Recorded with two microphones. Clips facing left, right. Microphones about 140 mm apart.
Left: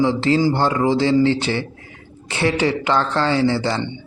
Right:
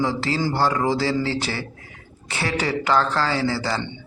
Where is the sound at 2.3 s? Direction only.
25° left (ahead or behind).